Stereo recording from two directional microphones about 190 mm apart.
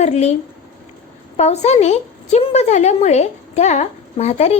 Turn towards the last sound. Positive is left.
turn(degrees=35)  # may be behind; listen again after turning